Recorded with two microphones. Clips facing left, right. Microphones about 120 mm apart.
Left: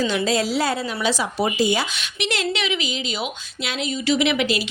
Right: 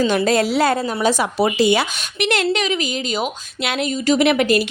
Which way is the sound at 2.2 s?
55° right (ahead or behind).